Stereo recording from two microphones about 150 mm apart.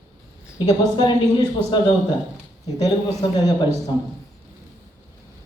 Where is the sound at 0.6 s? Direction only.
25° left (ahead or behind).